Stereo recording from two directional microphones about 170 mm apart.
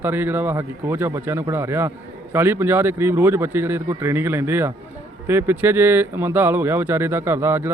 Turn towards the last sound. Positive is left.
turn(degrees=-15)  # may be behind; listen again after turning